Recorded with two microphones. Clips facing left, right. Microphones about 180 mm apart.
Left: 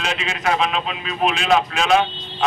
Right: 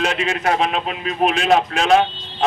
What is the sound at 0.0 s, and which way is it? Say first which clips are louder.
A man's voice: right 4 dB; 45° right (ahead or behind).